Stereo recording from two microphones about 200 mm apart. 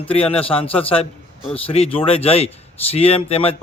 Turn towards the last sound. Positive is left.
turn(degrees=30)  # may be behind; listen again after turning